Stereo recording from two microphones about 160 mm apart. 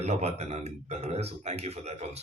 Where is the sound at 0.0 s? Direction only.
45° right (ahead or behind).